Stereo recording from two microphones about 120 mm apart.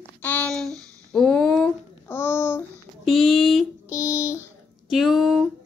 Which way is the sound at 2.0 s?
20° left (ahead or behind).